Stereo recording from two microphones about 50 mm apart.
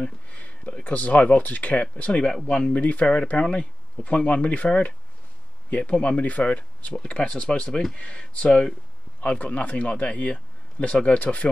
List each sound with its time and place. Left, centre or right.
0.3 s a sound: left
0.8 s speech: left
2.7 s speech: left
9.2 s speech: left